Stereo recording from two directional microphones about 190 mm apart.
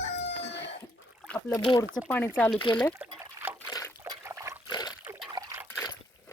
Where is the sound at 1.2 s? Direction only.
5° left (ahead or behind).